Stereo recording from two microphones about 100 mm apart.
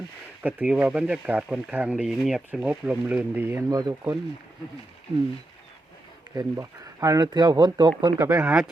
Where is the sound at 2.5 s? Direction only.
15° right (ahead or behind).